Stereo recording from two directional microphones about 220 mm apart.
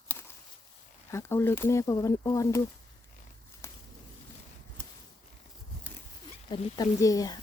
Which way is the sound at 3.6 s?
10° left (ahead or behind).